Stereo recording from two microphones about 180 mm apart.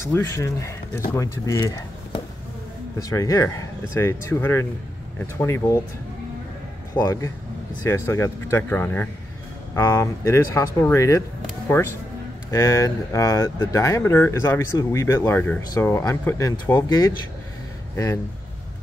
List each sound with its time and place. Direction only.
0.0 s speech: 15° left (ahead or behind)
3.0 s speech: 20° left (ahead or behind)
7.0 s speech: 15° left (ahead or behind)
12.4 s speech: 20° left (ahead or behind)
17.9 s speech: 15° left (ahead or behind)